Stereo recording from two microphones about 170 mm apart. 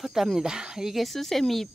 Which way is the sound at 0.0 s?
Centre (ahead or behind).